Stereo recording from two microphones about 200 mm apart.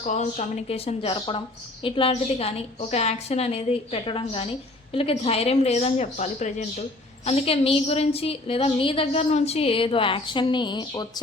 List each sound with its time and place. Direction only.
0.1 s a woman's voice: 35° left (ahead or behind)